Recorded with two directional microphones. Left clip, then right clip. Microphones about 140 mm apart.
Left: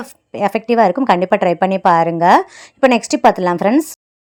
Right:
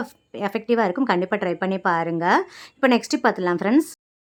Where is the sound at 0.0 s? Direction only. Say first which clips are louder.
Left 9 dB; 30° left (ahead or behind).